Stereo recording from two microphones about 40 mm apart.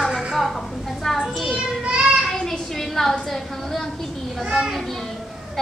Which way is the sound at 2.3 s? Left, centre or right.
Centre.